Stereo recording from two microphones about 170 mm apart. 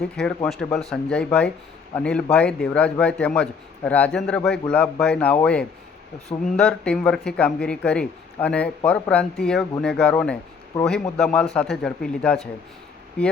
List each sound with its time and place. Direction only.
0.2 s a man's voice: centre (ahead or behind)